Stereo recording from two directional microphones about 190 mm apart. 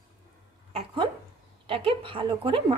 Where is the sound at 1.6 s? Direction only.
30° right (ahead or behind).